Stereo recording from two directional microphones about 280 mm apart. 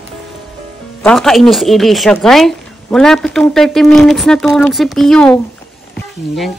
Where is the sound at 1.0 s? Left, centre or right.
Centre.